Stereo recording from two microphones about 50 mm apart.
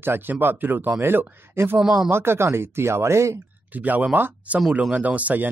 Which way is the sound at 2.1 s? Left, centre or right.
Right.